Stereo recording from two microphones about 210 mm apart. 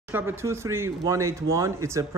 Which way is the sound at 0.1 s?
10° right (ahead or behind).